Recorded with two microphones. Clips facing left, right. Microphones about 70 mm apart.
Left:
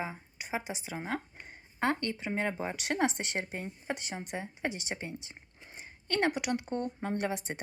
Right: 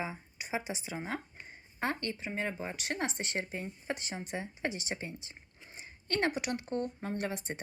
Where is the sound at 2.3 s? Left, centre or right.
Left.